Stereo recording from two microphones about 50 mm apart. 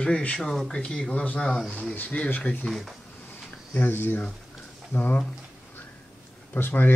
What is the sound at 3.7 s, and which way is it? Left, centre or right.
Speech, left.